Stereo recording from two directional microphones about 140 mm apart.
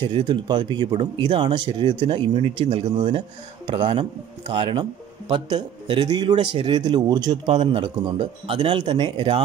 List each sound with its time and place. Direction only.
0.0 s speech: 35° right (ahead or behind)
7.5 s speech: 40° right (ahead or behind)